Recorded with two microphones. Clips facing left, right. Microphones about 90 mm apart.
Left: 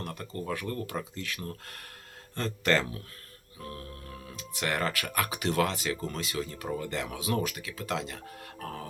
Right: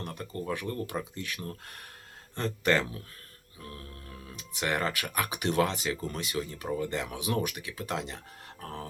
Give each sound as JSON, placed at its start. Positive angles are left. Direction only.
{"t": 0.0, "sound": "speech", "side_deg": -20}
{"t": 3.6, "sound": "music", "side_deg": 35}
{"t": 4.4, "sound": "speech", "side_deg": -20}